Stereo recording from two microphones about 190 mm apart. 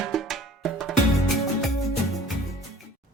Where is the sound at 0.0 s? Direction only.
Centre (ahead or behind).